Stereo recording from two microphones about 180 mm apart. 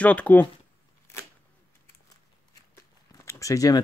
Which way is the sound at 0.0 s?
10° left (ahead or behind).